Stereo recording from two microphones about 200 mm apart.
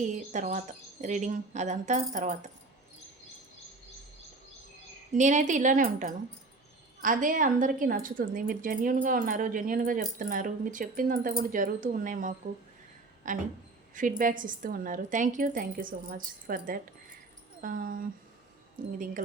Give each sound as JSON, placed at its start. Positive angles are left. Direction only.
{"t": 0.0, "sound": "speech", "side_deg": -35}
{"t": 5.1, "sound": "a woman's voice", "side_deg": -35}